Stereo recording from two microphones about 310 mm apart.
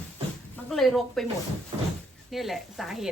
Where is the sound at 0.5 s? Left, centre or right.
Centre.